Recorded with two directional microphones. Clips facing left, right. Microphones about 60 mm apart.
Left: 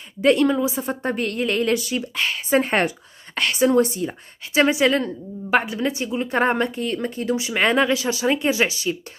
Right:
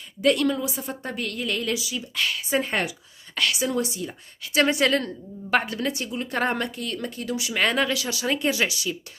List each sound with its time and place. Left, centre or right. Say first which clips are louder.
0.2 s a woman's voice: left 4 dB; left
2.1 s a woman's voice: left 4 dB; left
4.6 s a woman's voice: left 3 dB; centre; by 8.9 s left